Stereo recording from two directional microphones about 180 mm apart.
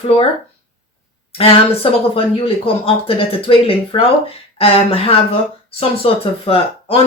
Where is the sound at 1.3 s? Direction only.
30° left (ahead or behind).